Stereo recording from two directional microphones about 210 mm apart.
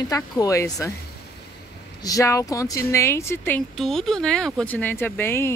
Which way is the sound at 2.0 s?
15° left (ahead or behind).